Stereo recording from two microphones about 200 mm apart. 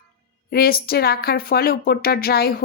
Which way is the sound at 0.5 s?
50° left (ahead or behind).